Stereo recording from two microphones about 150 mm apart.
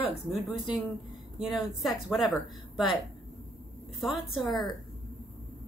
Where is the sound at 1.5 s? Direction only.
Centre (ahead or behind).